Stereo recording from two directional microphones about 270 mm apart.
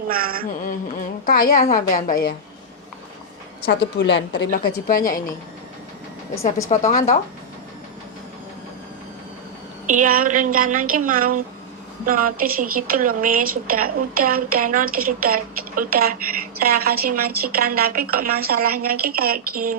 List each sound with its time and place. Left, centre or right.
0.1 s a woman's voice: right
1.2 s a woman's voice: left
3.9 s a woman's voice: left
6.7 s a woman's voice: left
9.8 s a woman's voice: right